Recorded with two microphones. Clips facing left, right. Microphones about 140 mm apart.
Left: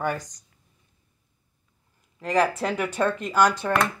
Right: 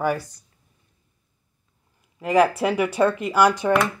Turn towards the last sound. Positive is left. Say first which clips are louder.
# right 3 dB
turn(degrees=-10)  # may be behind; listen again after turning